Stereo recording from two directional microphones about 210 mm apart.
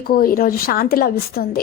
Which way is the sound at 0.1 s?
45° left (ahead or behind).